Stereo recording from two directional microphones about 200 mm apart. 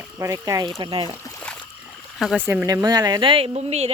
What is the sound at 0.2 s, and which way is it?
Speech, 15° right (ahead or behind).